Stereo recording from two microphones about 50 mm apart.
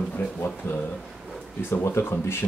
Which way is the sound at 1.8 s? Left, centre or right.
Left.